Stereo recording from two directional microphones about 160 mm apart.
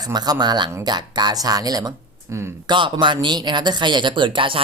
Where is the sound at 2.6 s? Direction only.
30° right (ahead or behind).